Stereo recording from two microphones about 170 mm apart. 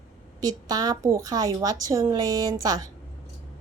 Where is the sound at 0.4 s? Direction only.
20° right (ahead or behind).